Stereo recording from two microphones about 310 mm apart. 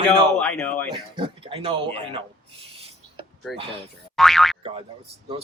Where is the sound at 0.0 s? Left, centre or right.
Centre.